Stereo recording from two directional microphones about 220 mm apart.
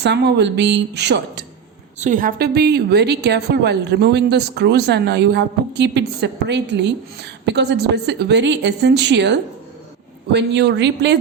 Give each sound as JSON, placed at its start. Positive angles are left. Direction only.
{"t": 0.0, "sound": "a woman's voice", "side_deg": -50}
{"t": 2.0, "sound": "a woman's voice", "side_deg": -35}